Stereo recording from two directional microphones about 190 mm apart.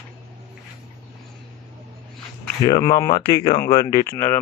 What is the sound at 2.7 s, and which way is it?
Speech, 20° left (ahead or behind).